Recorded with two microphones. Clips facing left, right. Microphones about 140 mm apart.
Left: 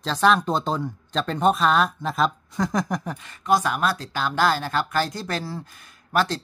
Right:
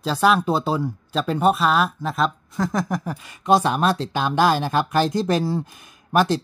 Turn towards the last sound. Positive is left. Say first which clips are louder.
# right 4 dB
turn(degrees=-15)  # may be behind; listen again after turning